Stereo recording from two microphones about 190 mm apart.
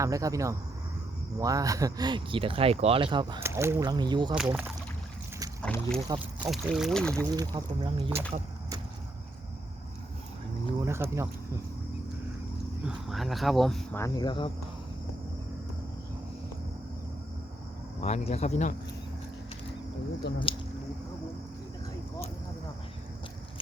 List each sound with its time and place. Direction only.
0.0 s speech: 15° right (ahead or behind)
3.4 s speech: 15° right (ahead or behind)
4.4 s speech: 5° right (ahead or behind)
5.6 s speech: 5° left (ahead or behind)
6.4 s speech: 10° right (ahead or behind)
7.2 s speech: 20° right (ahead or behind)
10.8 s a sound: 15° right (ahead or behind)
12.9 s speech: centre (ahead or behind)
14.0 s speech: 20° left (ahead or behind)
18.0 s speech: 35° left (ahead or behind)
20.5 s speech: 30° left (ahead or behind)